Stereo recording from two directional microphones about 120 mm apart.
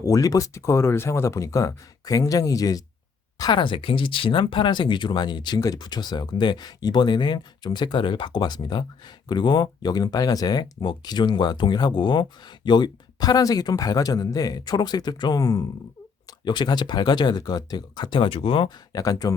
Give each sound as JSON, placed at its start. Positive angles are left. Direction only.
{"t": 0.0, "sound": "speech", "side_deg": 30}
{"t": 18.9, "sound": "speech", "side_deg": 30}